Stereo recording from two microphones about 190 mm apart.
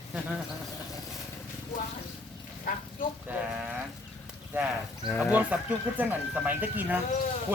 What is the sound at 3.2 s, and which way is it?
Speech, 10° right (ahead or behind).